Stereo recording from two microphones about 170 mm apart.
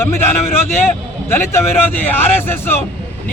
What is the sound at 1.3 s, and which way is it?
Speech, 15° left (ahead or behind).